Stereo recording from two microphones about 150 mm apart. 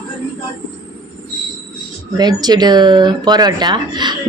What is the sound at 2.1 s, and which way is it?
A woman's voice, 25° right (ahead or behind).